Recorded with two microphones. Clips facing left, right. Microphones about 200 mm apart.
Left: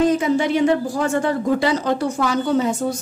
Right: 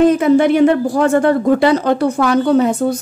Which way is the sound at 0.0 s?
60° right (ahead or behind).